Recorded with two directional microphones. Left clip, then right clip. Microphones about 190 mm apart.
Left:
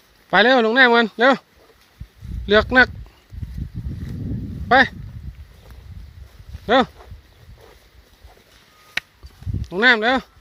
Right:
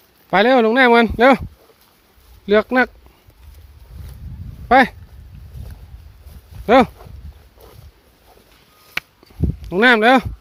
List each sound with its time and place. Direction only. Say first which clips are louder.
0.3 s speech: right 1 dB; 10° right (ahead or behind)
2.5 s speech: left 1 dB; 10° right (ahead or behind)
4.7 s speech: right 2 dB; 20° right (ahead or behind)
6.7 s speech: right 4 dB; 25° right (ahead or behind)
9.6 s speech: right 2 dB; 25° right (ahead or behind)